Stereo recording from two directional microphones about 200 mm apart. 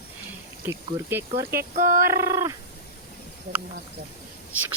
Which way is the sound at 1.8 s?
40° right (ahead or behind).